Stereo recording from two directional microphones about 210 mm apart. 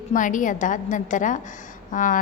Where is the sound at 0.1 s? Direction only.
40° left (ahead or behind).